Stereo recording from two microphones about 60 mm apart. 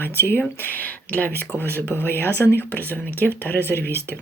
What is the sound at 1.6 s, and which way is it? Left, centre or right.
Speech, right.